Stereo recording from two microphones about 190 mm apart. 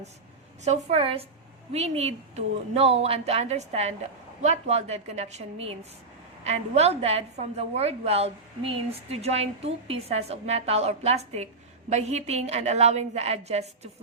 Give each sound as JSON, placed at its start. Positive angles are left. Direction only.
{"t": 0.6, "sound": "a woman's voice", "side_deg": -35}